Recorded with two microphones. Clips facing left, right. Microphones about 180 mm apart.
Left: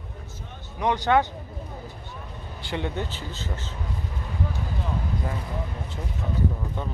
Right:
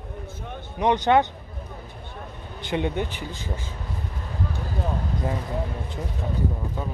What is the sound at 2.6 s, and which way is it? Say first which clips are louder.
Speech: right 4 dB; 20° right (ahead or behind).